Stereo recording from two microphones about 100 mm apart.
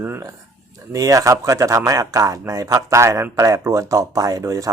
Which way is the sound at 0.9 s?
35° right (ahead or behind).